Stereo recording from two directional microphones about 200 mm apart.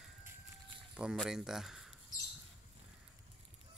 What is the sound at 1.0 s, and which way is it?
Speech, 5° right (ahead or behind).